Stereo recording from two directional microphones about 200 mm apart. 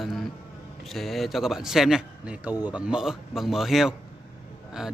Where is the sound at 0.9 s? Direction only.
Centre (ahead or behind).